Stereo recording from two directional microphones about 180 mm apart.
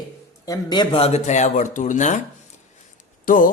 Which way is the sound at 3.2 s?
50° left (ahead or behind).